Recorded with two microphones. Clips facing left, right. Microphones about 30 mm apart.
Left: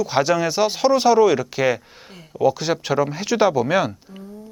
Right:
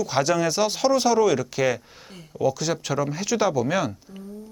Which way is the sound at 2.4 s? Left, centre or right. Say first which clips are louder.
Left 4 dB; left.